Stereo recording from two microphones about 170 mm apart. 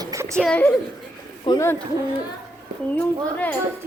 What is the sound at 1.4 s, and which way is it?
Speech, 25° left (ahead or behind).